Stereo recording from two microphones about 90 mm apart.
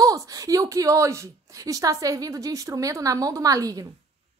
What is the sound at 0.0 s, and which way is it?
A woman's voice, 40° right (ahead or behind).